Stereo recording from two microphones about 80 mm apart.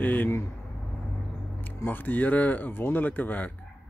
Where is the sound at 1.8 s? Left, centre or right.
Left.